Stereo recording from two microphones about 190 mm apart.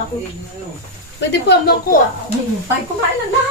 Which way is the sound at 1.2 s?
65° left (ahead or behind).